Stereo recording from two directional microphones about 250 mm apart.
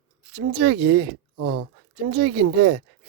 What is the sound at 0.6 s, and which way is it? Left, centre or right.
Speech, right.